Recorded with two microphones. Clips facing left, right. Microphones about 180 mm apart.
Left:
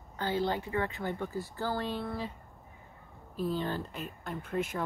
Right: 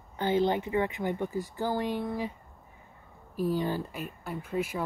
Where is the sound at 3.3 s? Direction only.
10° right (ahead or behind).